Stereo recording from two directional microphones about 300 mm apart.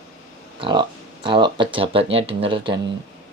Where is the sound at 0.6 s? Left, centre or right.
Centre.